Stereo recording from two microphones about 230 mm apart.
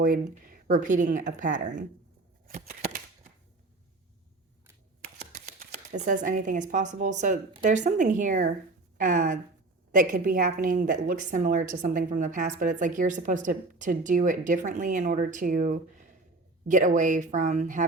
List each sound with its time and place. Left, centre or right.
0.0 s a woman's voice: right
2.5 s a sound: right
5.3 s shuffling cards: right
6.2 s a woman's voice: right